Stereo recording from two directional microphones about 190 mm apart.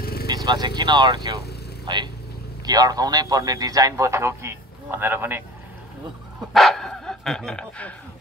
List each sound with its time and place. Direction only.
0.0 s vehicle: 55° left (ahead or behind)
0.5 s a man's voice: 20° right (ahead or behind)
6.5 s speech: centre (ahead or behind)